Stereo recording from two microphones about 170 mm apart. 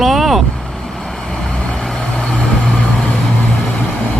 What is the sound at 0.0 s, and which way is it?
Vehicle, centre (ahead or behind).